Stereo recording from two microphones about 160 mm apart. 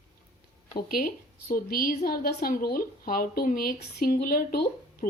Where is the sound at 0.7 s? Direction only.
65° left (ahead or behind).